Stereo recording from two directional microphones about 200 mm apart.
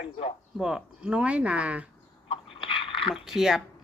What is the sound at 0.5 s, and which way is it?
Speech, 5° right (ahead or behind).